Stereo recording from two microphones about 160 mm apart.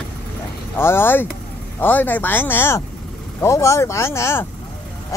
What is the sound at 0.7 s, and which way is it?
Speech, 15° left (ahead or behind).